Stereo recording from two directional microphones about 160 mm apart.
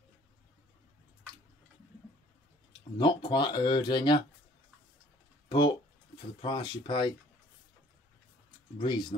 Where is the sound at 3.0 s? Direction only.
30° left (ahead or behind).